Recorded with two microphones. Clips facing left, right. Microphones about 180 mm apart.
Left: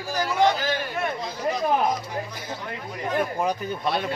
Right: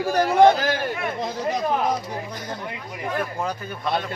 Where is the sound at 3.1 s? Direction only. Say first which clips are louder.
Left 3 dB; 15° left (ahead or behind).